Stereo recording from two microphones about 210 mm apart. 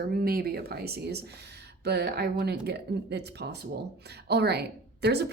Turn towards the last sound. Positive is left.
turn(degrees=-50)  # may be behind; listen again after turning